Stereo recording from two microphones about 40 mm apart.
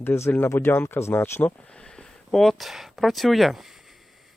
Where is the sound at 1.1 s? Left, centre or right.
Left.